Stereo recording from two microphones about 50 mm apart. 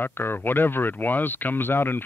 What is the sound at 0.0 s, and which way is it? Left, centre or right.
Speech, left.